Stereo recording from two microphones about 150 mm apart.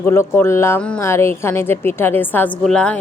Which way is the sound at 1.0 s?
20° left (ahead or behind).